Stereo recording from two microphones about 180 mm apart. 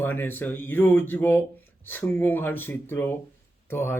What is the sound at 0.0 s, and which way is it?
A man's voice, 10° left (ahead or behind).